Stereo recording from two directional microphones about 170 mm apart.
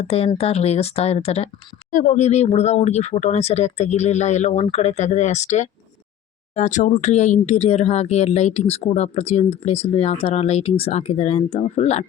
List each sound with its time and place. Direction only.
0.0 s speech: 35° left (ahead or behind)